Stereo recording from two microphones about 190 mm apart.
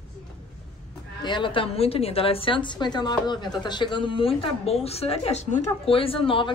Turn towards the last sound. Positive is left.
turn(degrees=25)  # may be behind; listen again after turning